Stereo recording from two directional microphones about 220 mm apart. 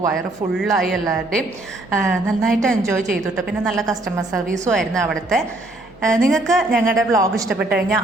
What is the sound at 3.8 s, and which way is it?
Speech, 15° right (ahead or behind).